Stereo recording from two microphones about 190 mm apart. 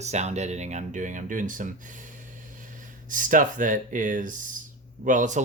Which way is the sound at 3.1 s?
45° right (ahead or behind).